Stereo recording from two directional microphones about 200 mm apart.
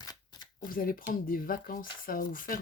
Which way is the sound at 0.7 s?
45° left (ahead or behind).